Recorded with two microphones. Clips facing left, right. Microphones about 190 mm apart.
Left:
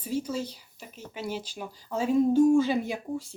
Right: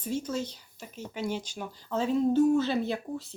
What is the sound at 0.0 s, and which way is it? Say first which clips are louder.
Speech: left 1 dB; 10° left (ahead or behind).